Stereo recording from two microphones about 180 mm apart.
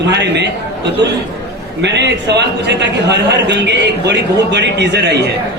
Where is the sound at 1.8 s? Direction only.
75° right (ahead or behind).